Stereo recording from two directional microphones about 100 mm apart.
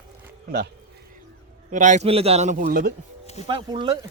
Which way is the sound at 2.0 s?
85° right.